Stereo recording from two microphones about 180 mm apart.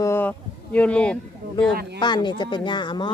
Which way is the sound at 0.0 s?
10° left (ahead or behind).